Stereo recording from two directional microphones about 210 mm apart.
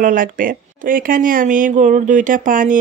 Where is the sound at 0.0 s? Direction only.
40° right (ahead or behind).